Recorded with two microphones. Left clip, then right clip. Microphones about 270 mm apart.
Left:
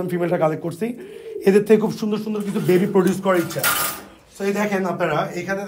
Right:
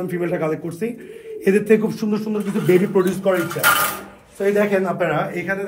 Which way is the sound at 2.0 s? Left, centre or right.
Centre.